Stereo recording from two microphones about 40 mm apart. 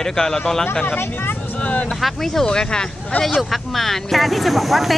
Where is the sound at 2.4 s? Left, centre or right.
Left.